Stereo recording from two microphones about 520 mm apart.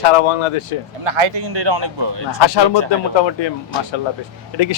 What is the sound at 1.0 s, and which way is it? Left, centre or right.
Speech, right.